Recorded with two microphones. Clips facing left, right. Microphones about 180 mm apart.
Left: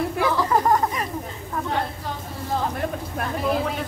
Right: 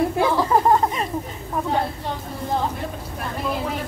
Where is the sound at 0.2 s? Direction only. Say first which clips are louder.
Right 1 dB; 25° right (ahead or behind).